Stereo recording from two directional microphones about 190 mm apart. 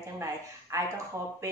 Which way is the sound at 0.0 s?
15° right (ahead or behind).